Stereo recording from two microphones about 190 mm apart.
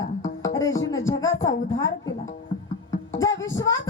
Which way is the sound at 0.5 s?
15° left (ahead or behind).